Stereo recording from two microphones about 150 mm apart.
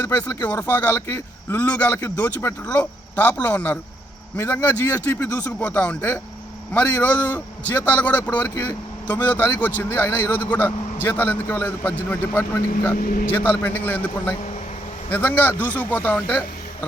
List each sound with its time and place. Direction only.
0.4 s a man's voice: 10° left (ahead or behind)
13.0 s speech: 70° left (ahead or behind)
13.3 s a man's voice: 15° left (ahead or behind)
15.5 s speech: 15° right (ahead or behind)
15.8 s a man's voice: 10° left (ahead or behind)